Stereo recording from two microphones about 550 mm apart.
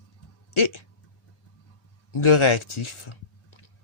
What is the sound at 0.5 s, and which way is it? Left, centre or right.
Speech, left.